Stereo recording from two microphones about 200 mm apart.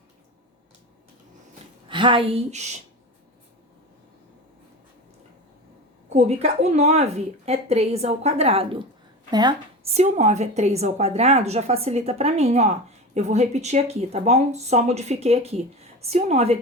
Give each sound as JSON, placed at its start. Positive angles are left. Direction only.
{"t": 1.9, "sound": "speech", "side_deg": -25}
{"t": 6.1, "sound": "a woman's voice", "side_deg": -35}